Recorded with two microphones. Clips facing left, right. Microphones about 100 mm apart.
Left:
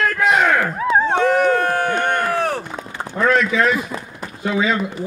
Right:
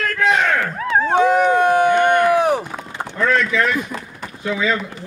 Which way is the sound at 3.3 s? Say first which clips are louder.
Left 1 dB; 10° left (ahead or behind).